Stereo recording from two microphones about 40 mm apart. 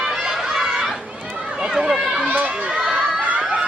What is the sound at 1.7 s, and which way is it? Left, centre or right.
Speech, centre.